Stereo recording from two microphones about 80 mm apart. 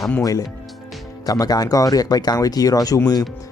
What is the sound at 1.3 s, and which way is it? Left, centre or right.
Speech, left.